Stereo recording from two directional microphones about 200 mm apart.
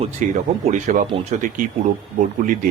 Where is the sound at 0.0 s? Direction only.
40° right (ahead or behind).